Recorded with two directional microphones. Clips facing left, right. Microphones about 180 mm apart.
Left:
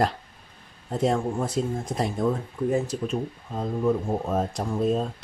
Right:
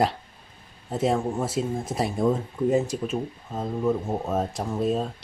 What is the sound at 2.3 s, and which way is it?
Speech, 20° right (ahead or behind).